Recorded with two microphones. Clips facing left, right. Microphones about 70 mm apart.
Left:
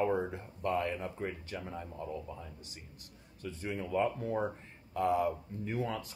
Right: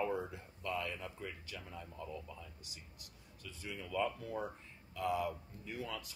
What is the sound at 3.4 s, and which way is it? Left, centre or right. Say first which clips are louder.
Speech: left 9 dB; left.